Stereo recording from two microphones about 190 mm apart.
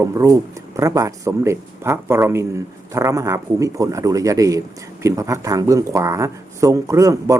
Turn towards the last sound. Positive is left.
turn(degrees=-15)  # may be behind; listen again after turning